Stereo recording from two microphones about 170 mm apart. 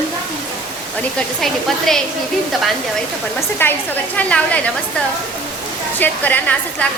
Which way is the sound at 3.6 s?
10° left (ahead or behind).